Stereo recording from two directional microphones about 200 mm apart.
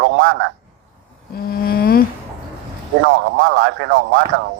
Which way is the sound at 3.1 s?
65° right (ahead or behind).